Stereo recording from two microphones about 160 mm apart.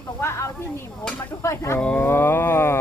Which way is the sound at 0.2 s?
15° left (ahead or behind).